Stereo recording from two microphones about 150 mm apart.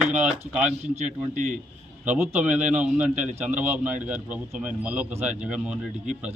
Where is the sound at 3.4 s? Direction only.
10° right (ahead or behind).